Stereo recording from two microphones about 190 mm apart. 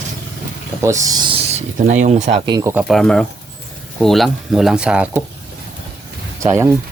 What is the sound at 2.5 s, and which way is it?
Speech, 15° right (ahead or behind).